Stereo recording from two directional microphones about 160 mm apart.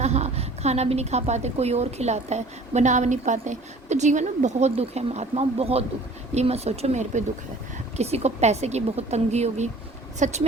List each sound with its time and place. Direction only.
0.0 s a woman's voice: 45° right (ahead or behind)